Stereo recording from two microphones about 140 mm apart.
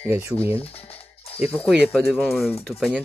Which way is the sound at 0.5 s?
45° left (ahead or behind).